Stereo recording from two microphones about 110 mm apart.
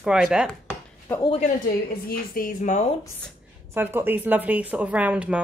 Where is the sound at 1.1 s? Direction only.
20° left (ahead or behind).